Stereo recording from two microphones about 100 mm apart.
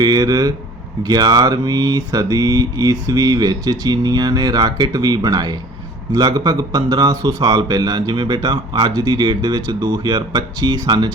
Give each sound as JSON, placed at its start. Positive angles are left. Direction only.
{"t": 0.0, "sound": "mantra", "side_deg": -40}
{"t": 6.1, "sound": "speech", "side_deg": -40}